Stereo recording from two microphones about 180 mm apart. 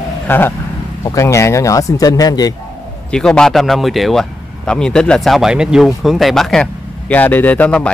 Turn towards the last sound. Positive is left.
turn(degrees=5)  # may be behind; listen again after turning